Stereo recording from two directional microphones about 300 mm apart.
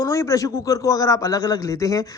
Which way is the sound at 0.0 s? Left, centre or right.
Centre.